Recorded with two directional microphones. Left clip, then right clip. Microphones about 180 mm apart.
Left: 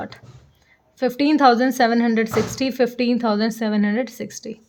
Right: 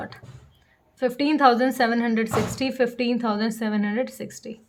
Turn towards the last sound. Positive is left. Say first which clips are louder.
# left 2 dB
turn(degrees=30)  # may be behind; listen again after turning